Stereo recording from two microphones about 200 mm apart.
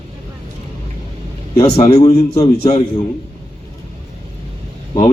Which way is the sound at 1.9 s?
20° left (ahead or behind).